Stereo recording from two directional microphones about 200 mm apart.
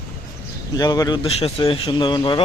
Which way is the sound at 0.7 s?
20° left (ahead or behind).